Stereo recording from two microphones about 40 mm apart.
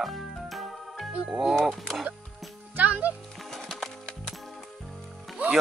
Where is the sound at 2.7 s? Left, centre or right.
Right.